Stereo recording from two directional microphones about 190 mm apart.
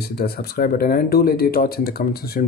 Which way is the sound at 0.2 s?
55° left (ahead or behind).